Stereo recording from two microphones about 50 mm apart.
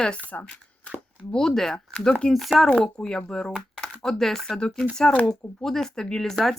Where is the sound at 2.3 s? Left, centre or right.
Centre.